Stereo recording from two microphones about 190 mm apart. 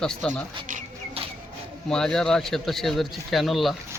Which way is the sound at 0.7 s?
40° right (ahead or behind).